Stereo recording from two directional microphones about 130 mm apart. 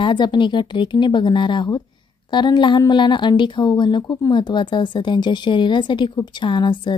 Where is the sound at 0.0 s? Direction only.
35° left (ahead or behind).